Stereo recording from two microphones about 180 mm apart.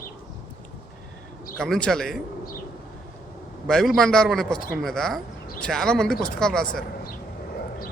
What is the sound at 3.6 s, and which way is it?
Speech, centre (ahead or behind).